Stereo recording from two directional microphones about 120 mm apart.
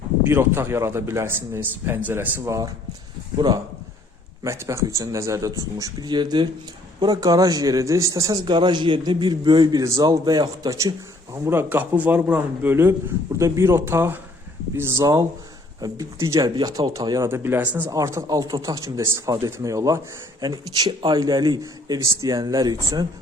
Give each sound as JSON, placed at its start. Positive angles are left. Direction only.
{"t": 0.3, "sound": "speech", "side_deg": -20}
{"t": 3.3, "sound": "a man's voice", "side_deg": -35}
{"t": 4.4, "sound": "a man's voice", "side_deg": -25}
{"t": 11.4, "sound": "a man's voice", "side_deg": -20}
{"t": 17.2, "sound": "a man's voice", "side_deg": -20}